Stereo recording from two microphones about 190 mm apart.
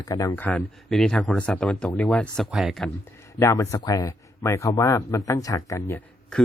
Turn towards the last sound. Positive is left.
turn(degrees=10)  # may be behind; listen again after turning